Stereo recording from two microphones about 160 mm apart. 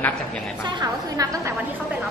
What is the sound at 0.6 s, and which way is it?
Speech, 25° right (ahead or behind).